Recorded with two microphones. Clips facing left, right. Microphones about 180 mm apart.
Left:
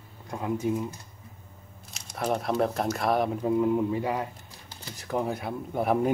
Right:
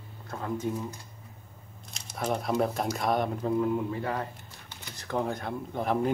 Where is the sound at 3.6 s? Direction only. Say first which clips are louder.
Left 5 dB; 15° left (ahead or behind).